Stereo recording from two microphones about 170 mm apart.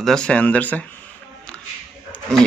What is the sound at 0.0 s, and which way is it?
Speech, 5° left (ahead or behind).